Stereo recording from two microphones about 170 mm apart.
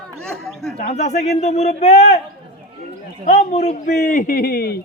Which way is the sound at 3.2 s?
45° left (ahead or behind).